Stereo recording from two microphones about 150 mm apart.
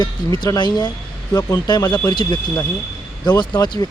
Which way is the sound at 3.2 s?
30° left (ahead or behind).